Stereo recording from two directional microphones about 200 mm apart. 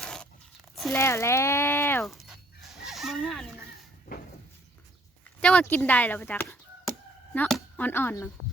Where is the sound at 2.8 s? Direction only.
Centre (ahead or behind).